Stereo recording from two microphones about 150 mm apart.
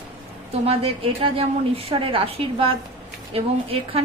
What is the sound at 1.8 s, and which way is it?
A woman's voice, 40° right (ahead or behind).